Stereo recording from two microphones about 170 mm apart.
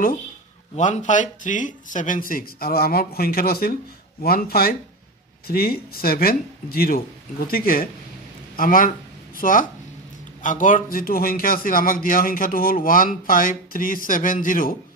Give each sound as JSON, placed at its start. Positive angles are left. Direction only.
{"t": 0.7, "sound": "speech", "side_deg": 45}